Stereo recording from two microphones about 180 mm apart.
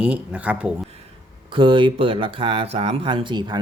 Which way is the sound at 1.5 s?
25° right (ahead or behind).